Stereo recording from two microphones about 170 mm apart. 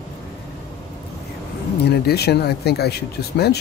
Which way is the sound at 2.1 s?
70° left (ahead or behind).